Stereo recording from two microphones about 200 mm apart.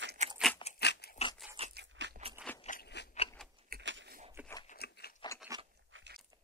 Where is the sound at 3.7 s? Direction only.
65° right (ahead or behind).